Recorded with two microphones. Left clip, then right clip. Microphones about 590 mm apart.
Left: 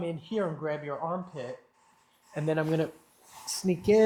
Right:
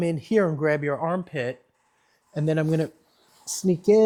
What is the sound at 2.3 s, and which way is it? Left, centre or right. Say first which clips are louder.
Speech: right 4 dB; right.